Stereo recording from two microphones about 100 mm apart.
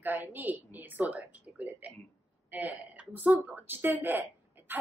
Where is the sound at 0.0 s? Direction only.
20° right (ahead or behind).